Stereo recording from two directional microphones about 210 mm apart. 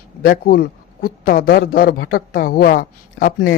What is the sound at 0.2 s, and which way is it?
A man's voice, 45° left (ahead or behind).